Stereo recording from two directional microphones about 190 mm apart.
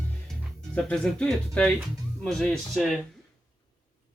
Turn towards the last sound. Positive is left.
turn(degrees=0)  # may be behind; listen again after turning